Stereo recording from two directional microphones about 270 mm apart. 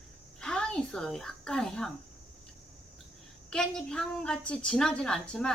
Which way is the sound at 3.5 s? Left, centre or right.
Centre.